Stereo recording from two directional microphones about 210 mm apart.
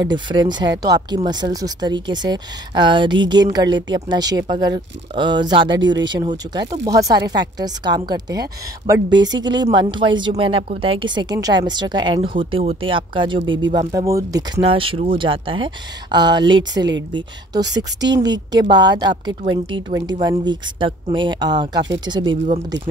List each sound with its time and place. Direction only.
0.0 s speech: 20° right (ahead or behind)
18.1 s speech: 20° right (ahead or behind)